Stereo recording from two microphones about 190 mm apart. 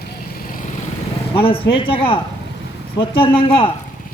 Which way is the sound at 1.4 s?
30° left (ahead or behind).